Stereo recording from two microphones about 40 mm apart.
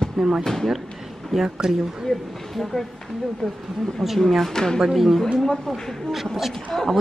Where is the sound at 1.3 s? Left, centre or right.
Centre.